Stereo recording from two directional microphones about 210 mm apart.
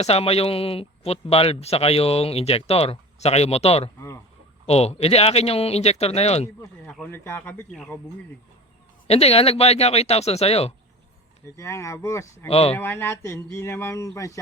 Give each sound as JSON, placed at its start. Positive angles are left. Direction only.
{"t": 0.0, "sound": "speech", "side_deg": 30}
{"t": 6.6, "sound": "speech", "side_deg": 5}
{"t": 9.0, "sound": "speech", "side_deg": 30}
{"t": 11.5, "sound": "speech", "side_deg": 15}
{"t": 12.5, "sound": "speech", "side_deg": 30}
{"t": 12.7, "sound": "speech", "side_deg": 10}